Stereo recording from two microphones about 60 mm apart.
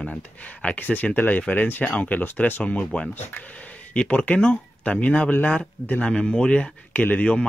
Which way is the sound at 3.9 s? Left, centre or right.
Left.